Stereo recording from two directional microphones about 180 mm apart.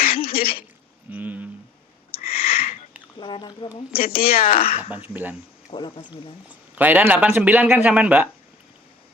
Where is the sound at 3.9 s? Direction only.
55° left (ahead or behind).